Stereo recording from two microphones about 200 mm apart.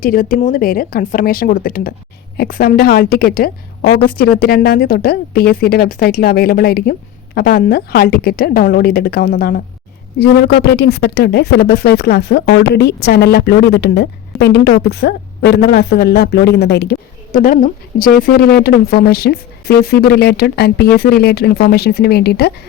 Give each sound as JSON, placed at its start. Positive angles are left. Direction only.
{"t": 0.0, "sound": "a woman's voice", "side_deg": 45}